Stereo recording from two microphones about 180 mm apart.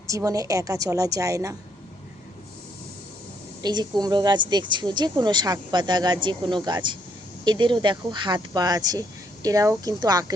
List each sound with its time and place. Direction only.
0.1 s a woman's voice: 15° right (ahead or behind)
3.6 s a woman's voice: 25° right (ahead or behind)